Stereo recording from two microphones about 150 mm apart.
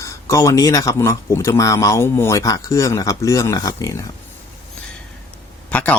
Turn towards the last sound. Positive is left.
turn(degrees=10)  # may be behind; listen again after turning